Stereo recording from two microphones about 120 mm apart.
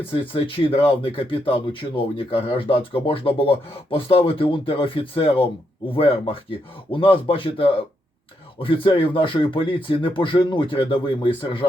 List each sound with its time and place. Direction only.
0.1 s speech: 45° left (ahead or behind)